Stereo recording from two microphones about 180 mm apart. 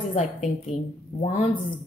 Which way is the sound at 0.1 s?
40° left (ahead or behind).